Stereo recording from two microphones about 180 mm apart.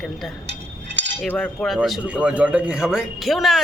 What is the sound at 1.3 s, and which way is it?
Speech, 5° left (ahead or behind).